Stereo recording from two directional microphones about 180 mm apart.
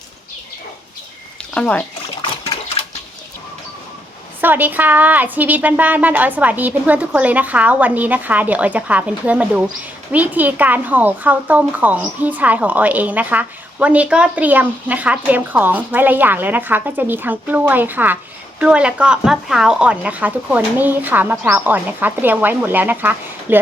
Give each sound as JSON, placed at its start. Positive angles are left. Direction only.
{"t": 1.5, "sound": "speech", "side_deg": 5}
{"t": 4.4, "sound": "a woman's voice", "side_deg": -10}